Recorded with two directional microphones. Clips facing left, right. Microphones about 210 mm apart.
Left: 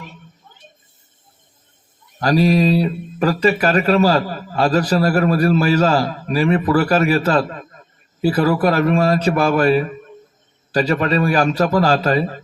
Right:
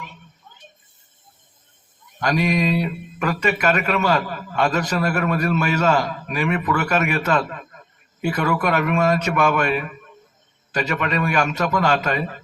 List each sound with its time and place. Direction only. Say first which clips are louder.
2.1 s speech: left 5 dB; 35° left (ahead or behind)